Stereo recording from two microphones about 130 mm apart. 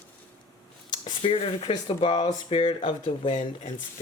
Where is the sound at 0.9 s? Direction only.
40° left (ahead or behind).